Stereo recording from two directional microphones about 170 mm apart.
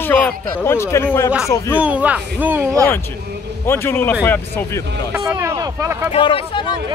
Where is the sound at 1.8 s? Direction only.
10° right (ahead or behind).